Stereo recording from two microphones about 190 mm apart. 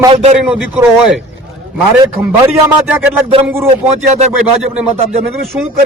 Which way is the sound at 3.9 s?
35° right (ahead or behind).